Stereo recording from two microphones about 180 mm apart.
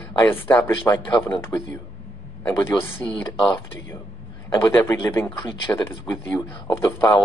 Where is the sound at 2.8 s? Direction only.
30° left (ahead or behind).